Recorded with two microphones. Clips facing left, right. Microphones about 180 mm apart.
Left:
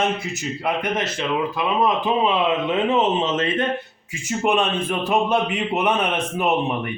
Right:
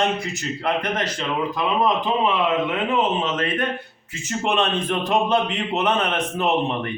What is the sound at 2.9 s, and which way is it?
Speech, 25° left (ahead or behind).